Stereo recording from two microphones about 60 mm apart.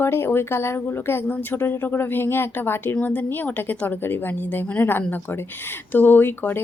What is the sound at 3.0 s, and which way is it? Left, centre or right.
A woman's voice, left.